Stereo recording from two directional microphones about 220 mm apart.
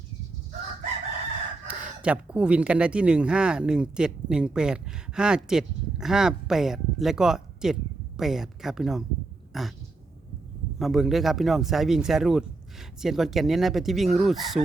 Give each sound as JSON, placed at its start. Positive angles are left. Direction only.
{"t": 1.6, "sound": "speech", "side_deg": -5}
{"t": 9.5, "sound": "a sound", "side_deg": 0}
{"t": 10.8, "sound": "speech", "side_deg": 0}